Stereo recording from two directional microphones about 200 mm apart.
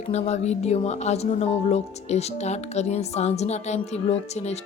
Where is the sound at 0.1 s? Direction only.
35° left (ahead or behind).